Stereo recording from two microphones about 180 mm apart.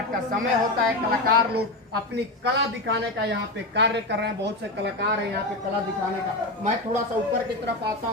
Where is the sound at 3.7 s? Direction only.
75° right (ahead or behind).